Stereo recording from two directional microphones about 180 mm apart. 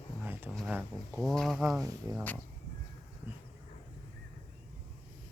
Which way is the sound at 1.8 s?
20° right (ahead or behind).